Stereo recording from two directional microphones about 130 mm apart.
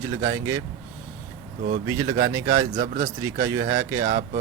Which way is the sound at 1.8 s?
30° right (ahead or behind).